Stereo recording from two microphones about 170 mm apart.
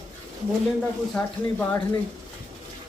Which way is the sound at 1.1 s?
10° left (ahead or behind).